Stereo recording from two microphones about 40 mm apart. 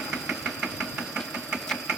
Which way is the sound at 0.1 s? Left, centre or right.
Centre.